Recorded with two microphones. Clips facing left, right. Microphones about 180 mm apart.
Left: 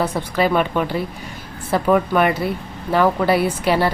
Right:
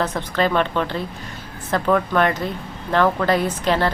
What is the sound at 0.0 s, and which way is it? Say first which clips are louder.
Speech: left 2 dB; 10° left (ahead or behind).